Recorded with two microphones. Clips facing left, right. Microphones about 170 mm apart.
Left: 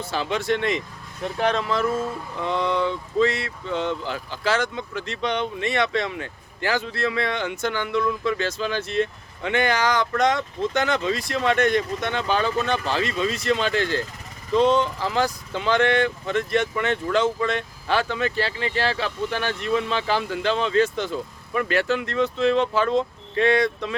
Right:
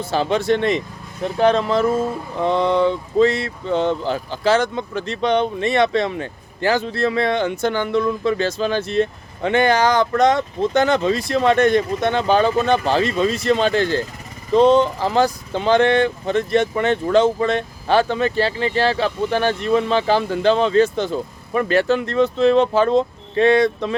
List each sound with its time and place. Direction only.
0.0 s speech: 30° right (ahead or behind)